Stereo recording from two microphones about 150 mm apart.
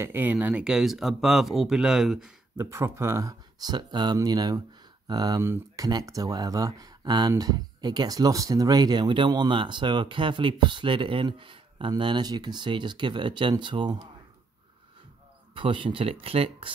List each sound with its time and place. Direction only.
0.0 s speech: 15° right (ahead or behind)
2.5 s speech: 20° right (ahead or behind)
5.4 s speech: 15° right (ahead or behind)
15.5 s speech: 35° right (ahead or behind)